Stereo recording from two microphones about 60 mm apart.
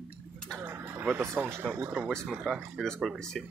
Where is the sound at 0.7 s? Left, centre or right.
Right.